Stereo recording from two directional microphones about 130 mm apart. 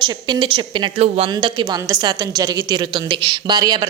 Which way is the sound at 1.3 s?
35° right (ahead or behind).